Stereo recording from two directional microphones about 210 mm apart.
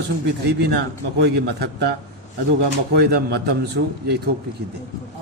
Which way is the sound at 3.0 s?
50° right (ahead or behind).